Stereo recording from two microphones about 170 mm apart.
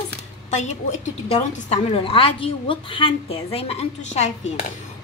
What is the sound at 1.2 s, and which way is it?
A woman's voice, 35° left (ahead or behind).